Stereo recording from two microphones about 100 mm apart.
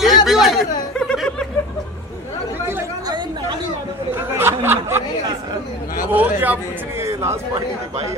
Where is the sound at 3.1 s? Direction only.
50° right (ahead or behind).